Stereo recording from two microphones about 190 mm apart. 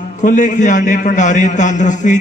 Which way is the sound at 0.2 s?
40° left (ahead or behind).